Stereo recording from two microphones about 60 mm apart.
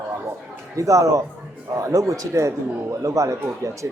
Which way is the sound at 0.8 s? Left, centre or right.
Right.